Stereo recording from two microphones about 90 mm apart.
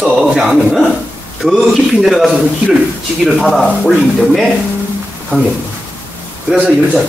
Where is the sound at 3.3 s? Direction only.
Centre (ahead or behind).